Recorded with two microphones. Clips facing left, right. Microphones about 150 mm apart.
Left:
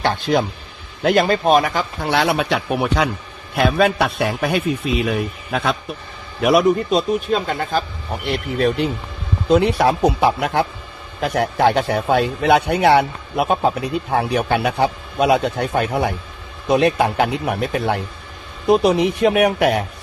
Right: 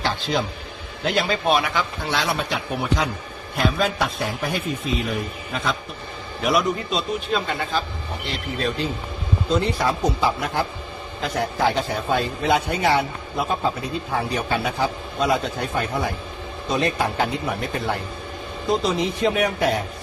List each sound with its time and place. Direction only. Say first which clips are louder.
0.0 s a man's voice: left 6 dB; 50° left (ahead or behind); by 5.7 s 65° left (ahead or behind)
6.4 s a man's voice: left 7 dB; 55° left (ahead or behind)
8.2 s a man's voice: left 8 dB; 60° left (ahead or behind)